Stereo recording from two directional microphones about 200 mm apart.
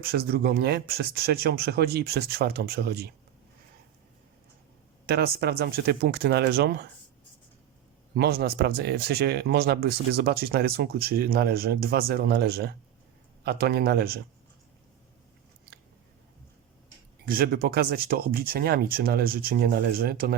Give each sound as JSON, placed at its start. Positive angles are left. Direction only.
{"t": 0.0, "sound": "speech", "side_deg": -50}
{"t": 5.0, "sound": "speech", "side_deg": -50}
{"t": 8.1, "sound": "speech", "side_deg": -55}
{"t": 17.2, "sound": "speech", "side_deg": -45}